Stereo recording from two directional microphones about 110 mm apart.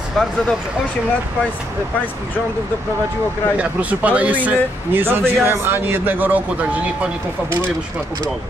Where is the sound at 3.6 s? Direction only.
15° right (ahead or behind).